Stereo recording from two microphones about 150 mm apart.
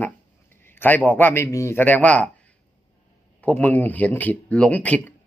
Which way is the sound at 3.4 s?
10° left (ahead or behind).